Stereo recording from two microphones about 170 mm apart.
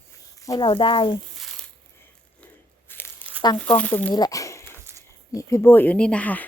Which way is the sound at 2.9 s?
10° left (ahead or behind).